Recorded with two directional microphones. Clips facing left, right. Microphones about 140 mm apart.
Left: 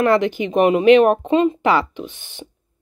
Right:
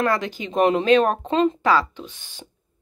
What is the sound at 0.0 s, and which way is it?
Speech, 20° left (ahead or behind).